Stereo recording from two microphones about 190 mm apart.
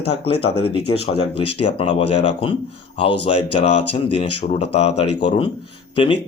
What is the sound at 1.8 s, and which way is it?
Speech, 30° left (ahead or behind).